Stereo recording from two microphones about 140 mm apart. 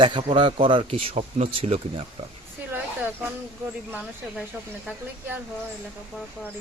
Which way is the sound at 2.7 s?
15° right (ahead or behind).